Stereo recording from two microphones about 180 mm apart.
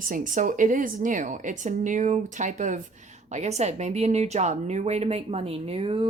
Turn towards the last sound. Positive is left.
turn(degrees=-30)  # may be behind; listen again after turning